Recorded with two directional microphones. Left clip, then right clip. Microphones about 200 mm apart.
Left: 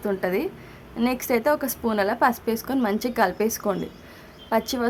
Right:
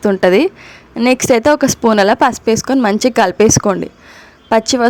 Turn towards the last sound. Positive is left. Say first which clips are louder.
# right 12 dB
turn(degrees=-35)  # may be behind; listen again after turning